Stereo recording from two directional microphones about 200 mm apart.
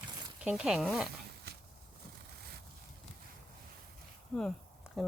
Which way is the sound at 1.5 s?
55° right (ahead or behind).